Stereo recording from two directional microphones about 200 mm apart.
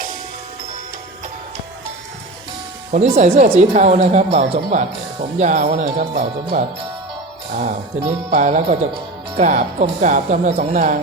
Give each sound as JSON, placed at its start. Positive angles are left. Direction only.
{"t": 2.9, "sound": "a woman's voice", "side_deg": -35}
{"t": 7.6, "sound": "a woman's voice", "side_deg": -35}